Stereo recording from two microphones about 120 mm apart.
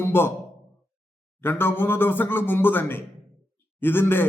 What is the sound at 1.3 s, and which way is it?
A man's voice, 20° left (ahead or behind).